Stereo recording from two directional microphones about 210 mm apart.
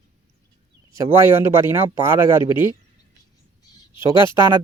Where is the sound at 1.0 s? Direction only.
10° right (ahead or behind).